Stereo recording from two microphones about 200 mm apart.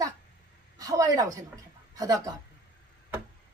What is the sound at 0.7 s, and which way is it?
A woman's voice, 15° right (ahead or behind).